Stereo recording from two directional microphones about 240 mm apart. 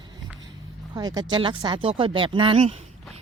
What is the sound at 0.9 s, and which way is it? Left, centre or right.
Speech, centre.